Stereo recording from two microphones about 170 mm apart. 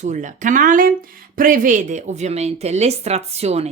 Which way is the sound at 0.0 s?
45° right (ahead or behind).